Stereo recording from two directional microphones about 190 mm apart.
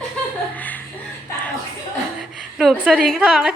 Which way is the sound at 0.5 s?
10° left (ahead or behind).